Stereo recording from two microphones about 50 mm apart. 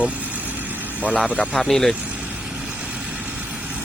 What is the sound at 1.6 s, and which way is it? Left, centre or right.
Speech, centre.